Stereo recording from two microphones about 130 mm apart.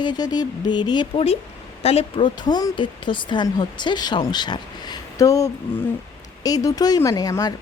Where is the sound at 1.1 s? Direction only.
50° left (ahead or behind).